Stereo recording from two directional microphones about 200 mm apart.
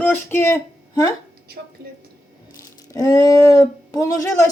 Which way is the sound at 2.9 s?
15° left (ahead or behind).